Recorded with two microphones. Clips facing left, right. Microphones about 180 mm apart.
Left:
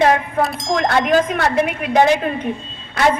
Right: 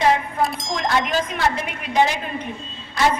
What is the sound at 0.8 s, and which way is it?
A woman's voice, 50° left (ahead or behind).